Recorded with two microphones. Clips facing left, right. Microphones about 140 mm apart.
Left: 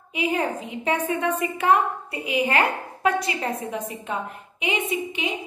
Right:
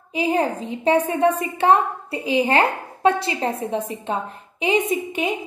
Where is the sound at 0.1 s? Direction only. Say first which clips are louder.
Right 4 dB; 35° right (ahead or behind).